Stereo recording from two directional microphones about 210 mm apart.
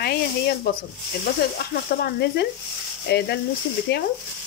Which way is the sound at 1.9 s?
50° left (ahead or behind).